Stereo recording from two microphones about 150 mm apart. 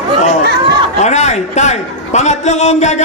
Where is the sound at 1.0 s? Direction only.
50° left (ahead or behind).